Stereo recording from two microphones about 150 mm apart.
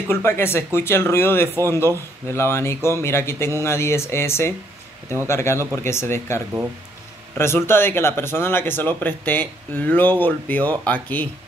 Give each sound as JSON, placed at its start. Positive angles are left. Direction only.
{"t": 0.1, "sound": "speech", "side_deg": 15}